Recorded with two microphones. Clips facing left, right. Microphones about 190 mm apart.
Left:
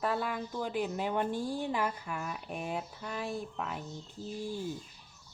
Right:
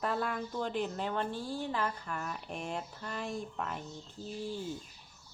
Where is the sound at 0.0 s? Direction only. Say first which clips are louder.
Left 1 dB; 5° left (ahead or behind).